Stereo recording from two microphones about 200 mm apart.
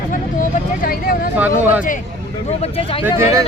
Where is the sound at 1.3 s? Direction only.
10° right (ahead or behind).